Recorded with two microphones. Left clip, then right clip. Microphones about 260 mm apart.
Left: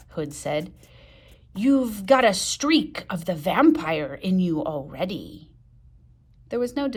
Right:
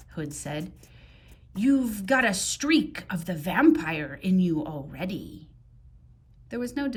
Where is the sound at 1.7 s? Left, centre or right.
Centre.